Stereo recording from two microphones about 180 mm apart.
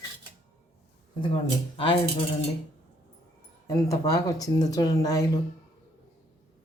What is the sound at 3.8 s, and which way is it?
Speech, 20° left (ahead or behind).